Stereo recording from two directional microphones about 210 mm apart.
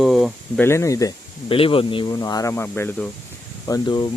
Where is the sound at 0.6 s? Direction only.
15° left (ahead or behind).